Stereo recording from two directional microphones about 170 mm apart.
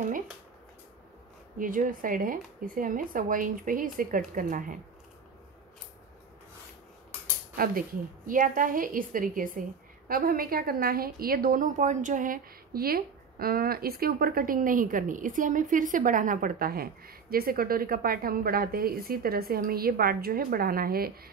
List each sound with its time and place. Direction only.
1.6 s speech: 55° right (ahead or behind)
7.5 s a woman's voice: 55° right (ahead or behind)